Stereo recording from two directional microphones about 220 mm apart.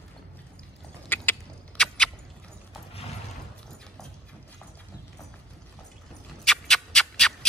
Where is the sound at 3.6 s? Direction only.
5° left (ahead or behind).